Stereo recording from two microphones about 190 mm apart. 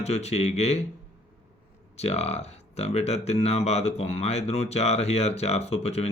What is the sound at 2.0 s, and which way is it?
Speech, 35° left (ahead or behind).